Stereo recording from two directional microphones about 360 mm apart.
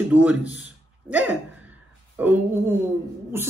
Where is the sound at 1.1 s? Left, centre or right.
Centre.